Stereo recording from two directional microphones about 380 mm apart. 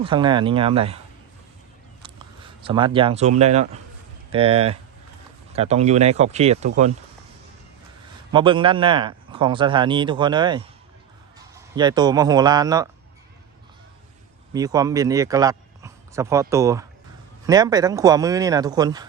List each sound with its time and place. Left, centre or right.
0.0 s speech: centre
8.3 s speech: centre
14.5 s speech: centre